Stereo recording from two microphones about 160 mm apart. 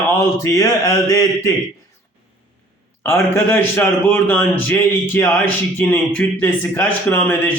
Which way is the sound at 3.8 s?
10° left (ahead or behind).